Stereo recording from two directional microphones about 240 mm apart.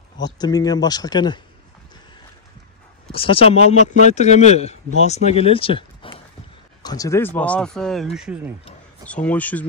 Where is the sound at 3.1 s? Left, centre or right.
Left.